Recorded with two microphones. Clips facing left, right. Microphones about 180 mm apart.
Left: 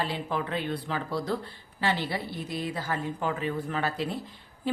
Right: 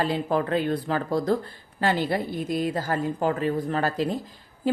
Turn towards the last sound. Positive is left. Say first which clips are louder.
# right 6 dB
turn(degrees=-40)  # may be behind; listen again after turning